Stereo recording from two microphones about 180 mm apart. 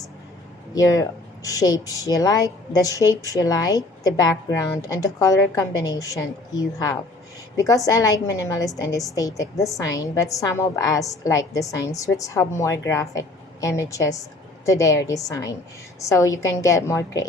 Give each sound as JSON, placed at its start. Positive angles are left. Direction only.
{"t": 0.7, "sound": "a woman's voice", "side_deg": 20}